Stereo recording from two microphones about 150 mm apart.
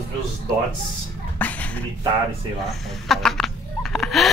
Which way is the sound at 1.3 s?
10° left (ahead or behind).